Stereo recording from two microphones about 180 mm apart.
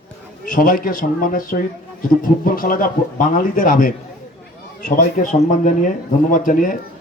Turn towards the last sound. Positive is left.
turn(degrees=45)  # may be behind; listen again after turning